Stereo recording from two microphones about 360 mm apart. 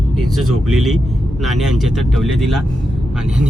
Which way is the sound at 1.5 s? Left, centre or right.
Centre.